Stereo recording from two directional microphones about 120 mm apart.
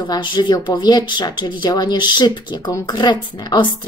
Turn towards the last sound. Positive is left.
turn(degrees=35)  # may be behind; listen again after turning